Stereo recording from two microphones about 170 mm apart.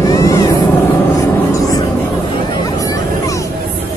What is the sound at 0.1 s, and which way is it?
Vehicle, 20° left (ahead or behind).